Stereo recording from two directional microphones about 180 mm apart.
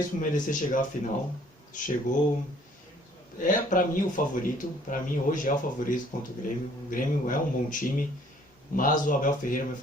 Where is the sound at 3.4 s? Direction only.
50° left (ahead or behind).